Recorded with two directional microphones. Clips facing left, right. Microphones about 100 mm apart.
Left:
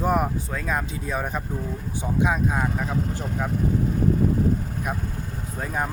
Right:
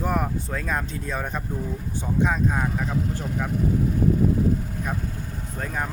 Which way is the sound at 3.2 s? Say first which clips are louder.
Even; 20° left (ahead or behind).